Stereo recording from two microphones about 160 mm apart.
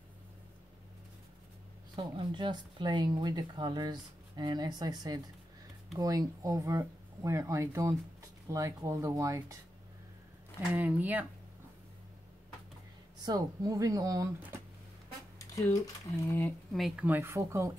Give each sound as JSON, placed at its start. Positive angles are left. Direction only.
{"t": 2.0, "sound": "speech", "side_deg": -30}
{"t": 10.7, "sound": "speech", "side_deg": -10}
{"t": 13.2, "sound": "speech", "side_deg": -25}
{"t": 15.3, "sound": "a sound", "side_deg": 20}
{"t": 16.7, "sound": "speech", "side_deg": -5}